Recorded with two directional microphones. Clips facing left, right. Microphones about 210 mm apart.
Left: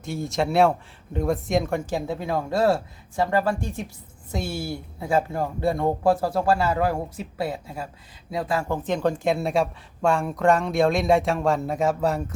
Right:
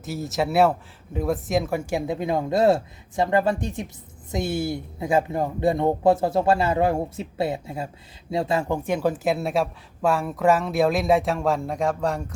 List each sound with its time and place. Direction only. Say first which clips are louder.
0.0 s speech: even; 5° right (ahead or behind)
1.9 s speech: right 2 dB; 15° right (ahead or behind); by 12.2 s 5° left (ahead or behind)